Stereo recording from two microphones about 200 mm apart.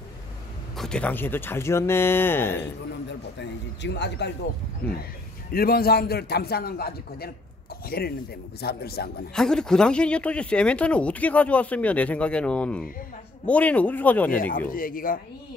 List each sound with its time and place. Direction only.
0.7 s speech: 5° left (ahead or behind)
3.1 s a man's voice: 60° left (ahead or behind)
5.5 s a man's voice: 50° left (ahead or behind)
9.3 s speech: 5° left (ahead or behind)
14.7 s a man's voice: 45° left (ahead or behind)